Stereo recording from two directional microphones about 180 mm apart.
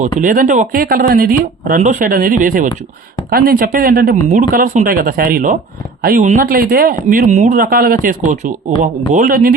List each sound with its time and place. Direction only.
0.0 s speech: 50° right (ahead or behind)
4.2 s speech: 45° right (ahead or behind)